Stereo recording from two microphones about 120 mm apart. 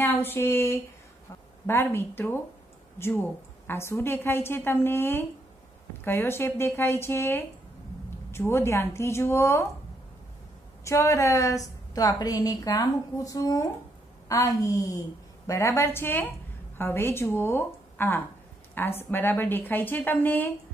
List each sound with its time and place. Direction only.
0.0 s a woman's voice: 15° left (ahead or behind)
10.8 s a woman's voice: 25° left (ahead or behind)